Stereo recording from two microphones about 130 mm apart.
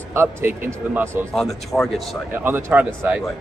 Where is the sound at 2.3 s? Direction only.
15° right (ahead or behind).